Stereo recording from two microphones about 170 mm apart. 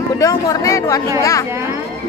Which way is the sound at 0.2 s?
20° left (ahead or behind).